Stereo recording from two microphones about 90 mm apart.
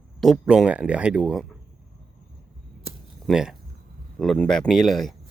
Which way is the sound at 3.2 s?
10° right (ahead or behind).